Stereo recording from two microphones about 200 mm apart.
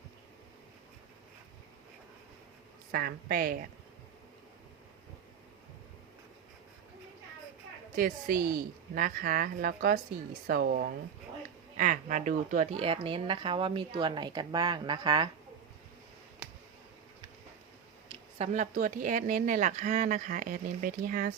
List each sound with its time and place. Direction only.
2.9 s a woman's voice: 50° right (ahead or behind)
7.9 s a woman's voice: 45° right (ahead or behind); by 15.3 s 20° right (ahead or behind)
18.1 s speech: 30° right (ahead or behind)